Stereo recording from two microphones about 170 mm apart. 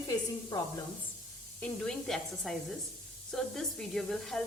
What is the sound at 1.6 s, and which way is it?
Speech, 5° left (ahead or behind).